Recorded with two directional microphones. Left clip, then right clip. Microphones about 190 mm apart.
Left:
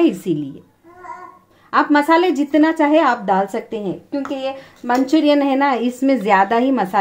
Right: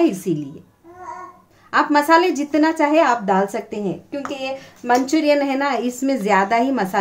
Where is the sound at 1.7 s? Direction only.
15° left (ahead or behind).